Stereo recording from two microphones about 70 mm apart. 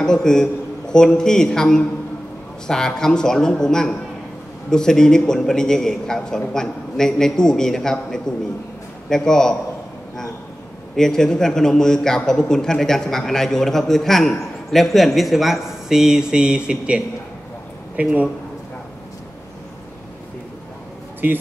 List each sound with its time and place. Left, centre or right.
0.0 s a man's voice: centre
11.0 s a man's voice: centre; by 18.3 s right